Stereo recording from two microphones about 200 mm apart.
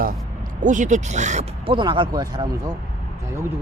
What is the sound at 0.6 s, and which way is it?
Speech, 40° right (ahead or behind).